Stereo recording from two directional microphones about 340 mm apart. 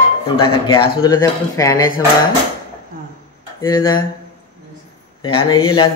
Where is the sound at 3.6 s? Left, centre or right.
Centre.